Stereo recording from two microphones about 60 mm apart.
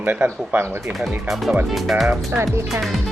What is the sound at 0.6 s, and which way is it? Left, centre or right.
Speech, right.